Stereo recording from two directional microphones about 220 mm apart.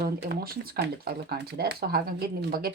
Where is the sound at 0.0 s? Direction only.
45° right (ahead or behind).